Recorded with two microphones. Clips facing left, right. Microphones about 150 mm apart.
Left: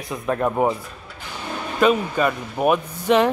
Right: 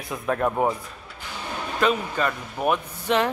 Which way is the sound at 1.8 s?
15° left (ahead or behind).